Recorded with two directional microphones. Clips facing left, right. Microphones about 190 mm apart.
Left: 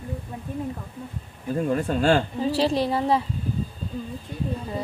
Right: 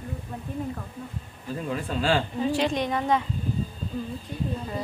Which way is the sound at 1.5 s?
45° left (ahead or behind).